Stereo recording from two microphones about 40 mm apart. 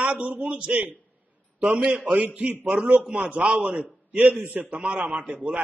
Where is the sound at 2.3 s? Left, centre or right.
Right.